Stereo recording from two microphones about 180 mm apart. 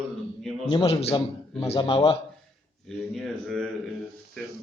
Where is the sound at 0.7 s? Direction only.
30° left (ahead or behind).